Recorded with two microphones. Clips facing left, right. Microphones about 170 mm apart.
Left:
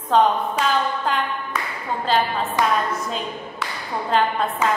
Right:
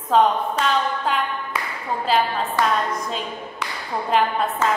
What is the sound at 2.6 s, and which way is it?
Speech, 15° left (ahead or behind).